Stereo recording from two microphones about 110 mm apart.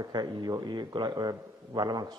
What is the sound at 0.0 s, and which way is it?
A man's voice, 40° right (ahead or behind).